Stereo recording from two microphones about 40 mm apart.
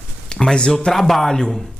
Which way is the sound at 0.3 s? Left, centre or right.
Left.